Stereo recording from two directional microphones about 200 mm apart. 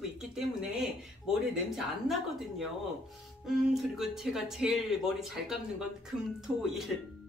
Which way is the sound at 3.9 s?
Centre (ahead or behind).